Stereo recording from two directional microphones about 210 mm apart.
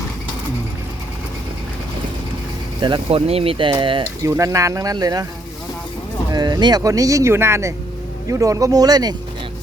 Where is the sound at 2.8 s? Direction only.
25° right (ahead or behind).